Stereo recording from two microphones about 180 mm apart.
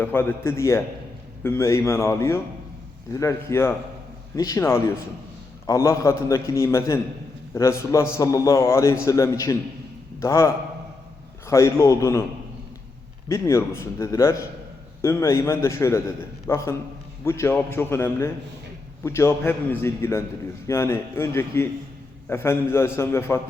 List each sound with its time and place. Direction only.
0.0 s a man's voice: 10° left (ahead or behind)
13.2 s a man's voice: 15° left (ahead or behind)